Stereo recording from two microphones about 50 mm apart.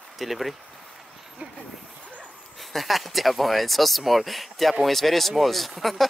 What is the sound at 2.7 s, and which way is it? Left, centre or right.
Speech, centre.